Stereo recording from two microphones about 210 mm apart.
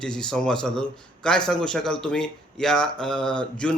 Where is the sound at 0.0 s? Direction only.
5° left (ahead or behind).